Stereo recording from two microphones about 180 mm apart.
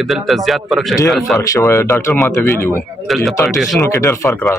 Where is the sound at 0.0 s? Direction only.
Centre (ahead or behind).